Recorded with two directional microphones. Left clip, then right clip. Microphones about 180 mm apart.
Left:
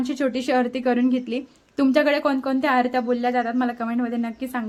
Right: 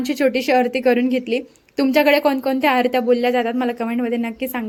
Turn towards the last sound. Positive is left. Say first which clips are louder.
# right 4 dB
turn(degrees=-10)  # may be behind; listen again after turning